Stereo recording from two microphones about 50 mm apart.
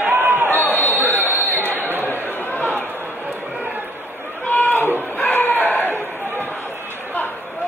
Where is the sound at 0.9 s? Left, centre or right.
Right.